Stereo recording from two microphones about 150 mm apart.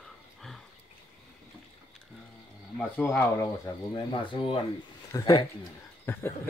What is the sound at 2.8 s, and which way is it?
Speech, 10° left (ahead or behind).